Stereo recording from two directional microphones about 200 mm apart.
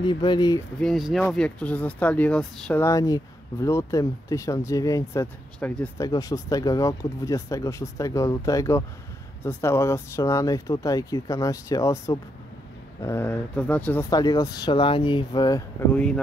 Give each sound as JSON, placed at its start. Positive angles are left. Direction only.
{"t": 0.0, "sound": "speech", "side_deg": 20}
{"t": 0.7, "sound": "speech", "side_deg": 0}
{"t": 14.1, "sound": "speech", "side_deg": 20}
{"t": 15.9, "sound": "speech", "side_deg": 5}